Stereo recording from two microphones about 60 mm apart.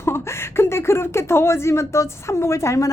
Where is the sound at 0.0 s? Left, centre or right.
Left.